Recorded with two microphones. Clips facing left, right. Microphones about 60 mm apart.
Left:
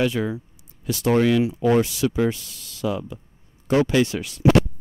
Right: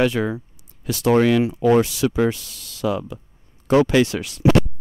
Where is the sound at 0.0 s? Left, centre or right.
Right.